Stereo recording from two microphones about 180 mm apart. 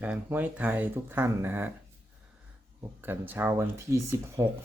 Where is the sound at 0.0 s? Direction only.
10° right (ahead or behind).